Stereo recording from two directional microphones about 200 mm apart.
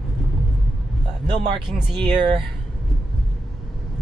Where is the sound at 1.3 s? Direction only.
25° right (ahead or behind).